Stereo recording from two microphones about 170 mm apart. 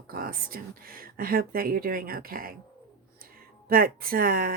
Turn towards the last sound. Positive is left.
turn(degrees=-60)  # may be behind; listen again after turning